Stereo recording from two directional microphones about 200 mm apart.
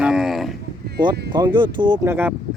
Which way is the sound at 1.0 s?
20° right (ahead or behind).